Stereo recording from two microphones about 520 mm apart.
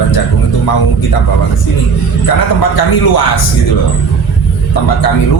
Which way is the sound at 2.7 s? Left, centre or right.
Left.